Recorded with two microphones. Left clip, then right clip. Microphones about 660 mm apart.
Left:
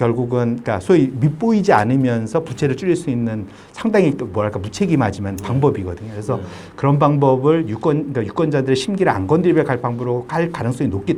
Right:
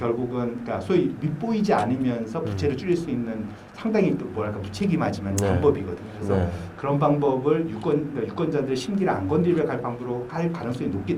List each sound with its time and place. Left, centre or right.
0.0 s speech: left
6.8 s speech: left